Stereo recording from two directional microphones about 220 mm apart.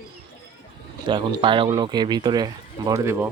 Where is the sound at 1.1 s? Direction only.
20° right (ahead or behind).